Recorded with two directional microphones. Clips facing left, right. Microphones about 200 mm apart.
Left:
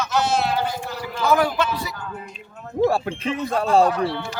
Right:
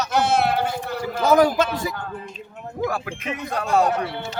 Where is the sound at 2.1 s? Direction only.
35° right (ahead or behind).